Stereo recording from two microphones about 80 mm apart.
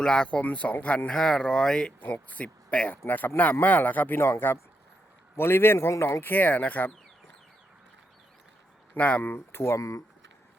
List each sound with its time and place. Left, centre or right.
0.0 s speech: centre
2.0 s speech: left
9.0 s speech: centre
9.3 s speech: left